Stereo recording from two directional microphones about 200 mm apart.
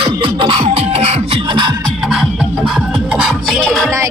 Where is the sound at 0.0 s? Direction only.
25° right (ahead or behind).